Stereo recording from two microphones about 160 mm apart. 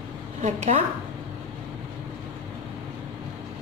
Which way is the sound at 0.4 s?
50° right (ahead or behind).